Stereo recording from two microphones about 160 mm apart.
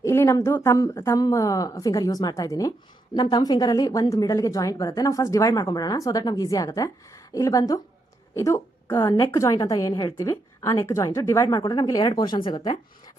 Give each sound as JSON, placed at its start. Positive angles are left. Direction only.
{"t": 0.0, "sound": "a woman's voice", "side_deg": 15}